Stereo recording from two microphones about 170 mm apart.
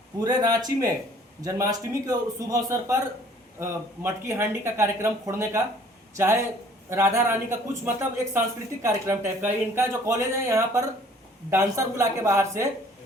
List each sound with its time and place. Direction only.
0.2 s a man's voice: 20° right (ahead or behind)